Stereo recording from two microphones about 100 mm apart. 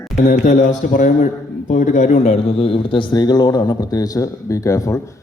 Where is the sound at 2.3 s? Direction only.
65° left (ahead or behind).